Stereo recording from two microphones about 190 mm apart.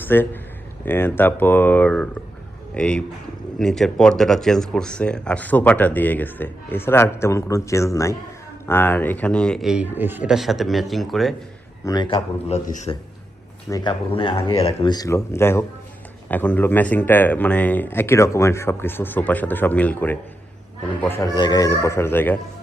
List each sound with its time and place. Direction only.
0.0 s a man's voice: 10° left (ahead or behind)
11.9 s a man's voice: 25° left (ahead or behind); by 12.9 s 40° left (ahead or behind)
13.7 s speech: 20° left (ahead or behind)